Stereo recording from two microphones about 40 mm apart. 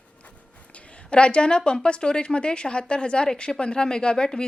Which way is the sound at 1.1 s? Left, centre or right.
Left.